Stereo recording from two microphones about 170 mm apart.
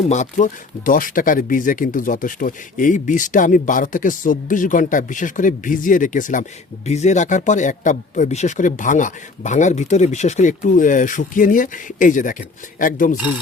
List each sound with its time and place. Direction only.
0.1 s speech: 45° left (ahead or behind)